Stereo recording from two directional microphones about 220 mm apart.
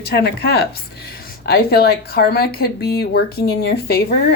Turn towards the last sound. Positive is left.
turn(degrees=45)  # may be behind; listen again after turning